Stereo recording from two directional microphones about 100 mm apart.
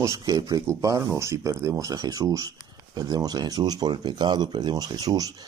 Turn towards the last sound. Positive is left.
turn(degrees=-40)  # may be behind; listen again after turning